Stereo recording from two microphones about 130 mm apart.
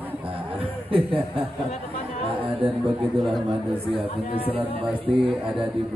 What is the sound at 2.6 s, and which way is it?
Speech, 40° right (ahead or behind).